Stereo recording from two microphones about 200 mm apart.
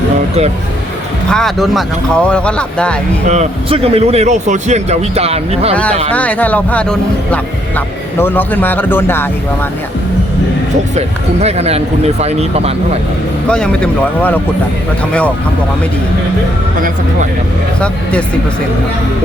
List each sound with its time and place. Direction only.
1.3 s speech: centre (ahead or behind)
3.2 s a man's voice: 30° right (ahead or behind)
6.1 s speech: 5° left (ahead or behind)
10.9 s a man's voice: 35° right (ahead or behind)
13.5 s speech: 5° left (ahead or behind)